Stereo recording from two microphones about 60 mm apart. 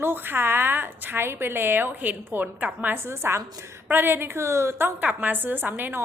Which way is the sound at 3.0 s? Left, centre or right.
Right.